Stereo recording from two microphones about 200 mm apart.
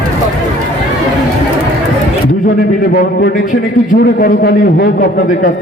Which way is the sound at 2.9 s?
50° left (ahead or behind).